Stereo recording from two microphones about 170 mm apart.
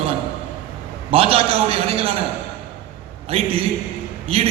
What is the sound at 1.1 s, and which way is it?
A man's voice, 35° right (ahead or behind).